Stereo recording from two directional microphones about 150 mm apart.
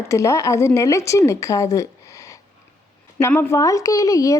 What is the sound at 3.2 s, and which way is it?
A woman's voice, 15° left (ahead or behind).